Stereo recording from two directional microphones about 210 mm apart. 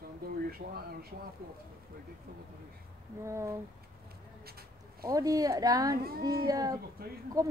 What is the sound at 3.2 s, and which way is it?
Speech, 15° right (ahead or behind).